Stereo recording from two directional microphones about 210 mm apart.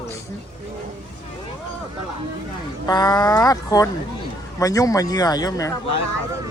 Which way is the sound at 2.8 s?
20° left (ahead or behind).